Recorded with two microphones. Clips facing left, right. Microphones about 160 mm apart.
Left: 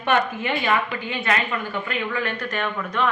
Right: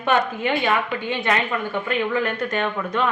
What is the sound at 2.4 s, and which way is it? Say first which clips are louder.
Speech: right 3 dB; 20° right (ahead or behind).